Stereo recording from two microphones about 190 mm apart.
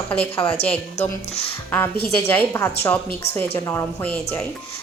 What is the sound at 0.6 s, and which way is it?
Speech, 35° left (ahead or behind).